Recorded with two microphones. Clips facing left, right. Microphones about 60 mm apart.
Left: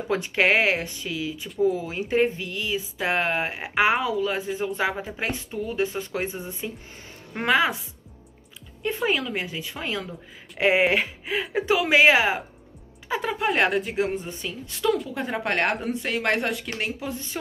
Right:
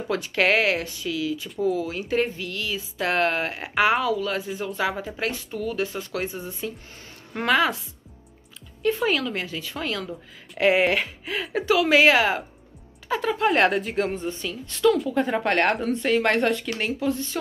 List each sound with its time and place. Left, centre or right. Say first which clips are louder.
0.1 s speech: even; left
9.1 s a woman's voice: right 1 dB; centre
15.0 s a woman's voice: right 5 dB; centre